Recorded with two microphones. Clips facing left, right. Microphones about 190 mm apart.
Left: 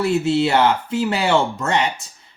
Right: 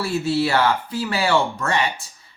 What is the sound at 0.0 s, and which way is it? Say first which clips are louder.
Speech: left 4 dB; 20° left (ahead or behind).